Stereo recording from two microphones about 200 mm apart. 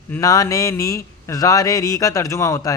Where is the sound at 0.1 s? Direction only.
15° left (ahead or behind).